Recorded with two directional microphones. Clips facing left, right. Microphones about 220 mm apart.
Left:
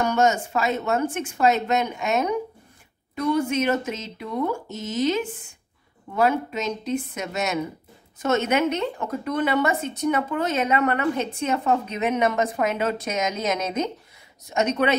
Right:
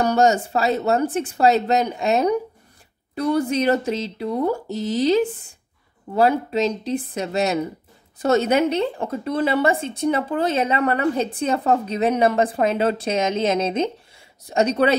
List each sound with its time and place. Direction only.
0.0 s speech: 35° right (ahead or behind)